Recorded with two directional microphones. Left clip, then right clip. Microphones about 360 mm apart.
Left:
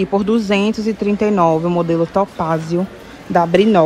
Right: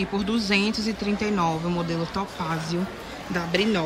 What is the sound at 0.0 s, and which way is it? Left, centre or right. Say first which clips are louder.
Speech: left 10 dB; centre.